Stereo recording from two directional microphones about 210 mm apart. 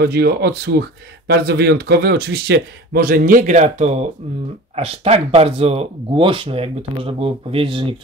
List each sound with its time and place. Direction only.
0.0 s speech: 50° right (ahead or behind); by 7.9 s 25° right (ahead or behind)